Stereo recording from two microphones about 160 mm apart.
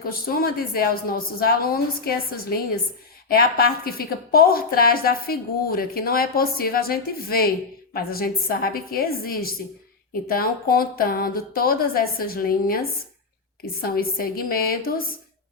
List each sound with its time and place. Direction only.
0.0 s a woman's voice: 65° left (ahead or behind)
13.8 s a woman's voice: 70° left (ahead or behind)